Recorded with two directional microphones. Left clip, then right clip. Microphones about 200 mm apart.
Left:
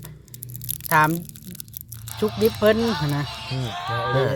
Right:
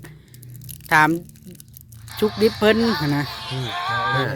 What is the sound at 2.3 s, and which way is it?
Speech, 20° right (ahead or behind).